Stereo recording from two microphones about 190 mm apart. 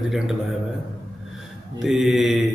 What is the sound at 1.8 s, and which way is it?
Speech, centre (ahead or behind).